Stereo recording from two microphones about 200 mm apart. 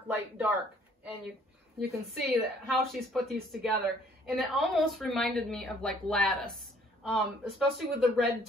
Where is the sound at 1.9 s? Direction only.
Centre (ahead or behind).